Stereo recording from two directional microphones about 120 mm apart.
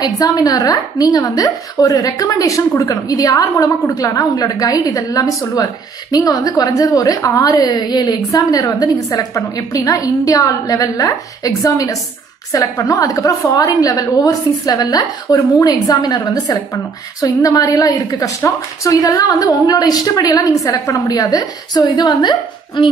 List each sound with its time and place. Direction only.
0.0 s a woman's voice: 30° left (ahead or behind)